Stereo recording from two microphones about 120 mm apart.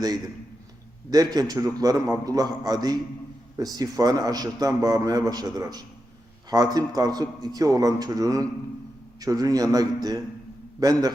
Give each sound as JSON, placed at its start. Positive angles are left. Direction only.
{"t": 1.1, "sound": "a man's voice", "side_deg": -30}